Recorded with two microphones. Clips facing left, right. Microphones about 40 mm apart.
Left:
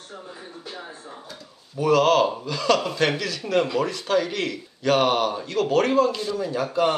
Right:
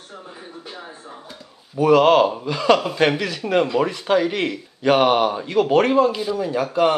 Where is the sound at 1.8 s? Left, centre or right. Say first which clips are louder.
Right 4 dB; right.